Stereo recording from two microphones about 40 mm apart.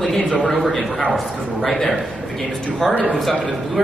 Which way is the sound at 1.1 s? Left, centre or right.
Centre.